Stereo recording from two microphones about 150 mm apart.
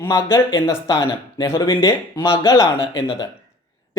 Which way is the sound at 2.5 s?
20° left (ahead or behind).